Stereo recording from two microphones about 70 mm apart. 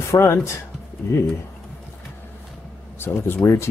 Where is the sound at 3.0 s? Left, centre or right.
Left.